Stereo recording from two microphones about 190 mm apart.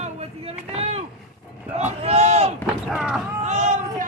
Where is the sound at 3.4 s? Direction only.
35° right (ahead or behind).